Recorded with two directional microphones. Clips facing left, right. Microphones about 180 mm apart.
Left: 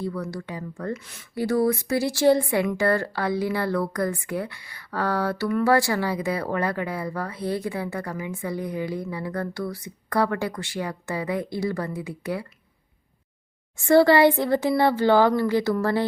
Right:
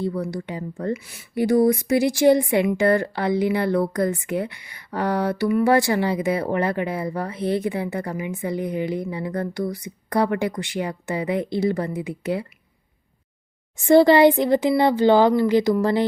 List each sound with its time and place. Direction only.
0.0 s speech: 25° right (ahead or behind)
5.5 s speech: 10° right (ahead or behind)
5.7 s speech: 20° right (ahead or behind)
13.7 s speech: 20° right (ahead or behind)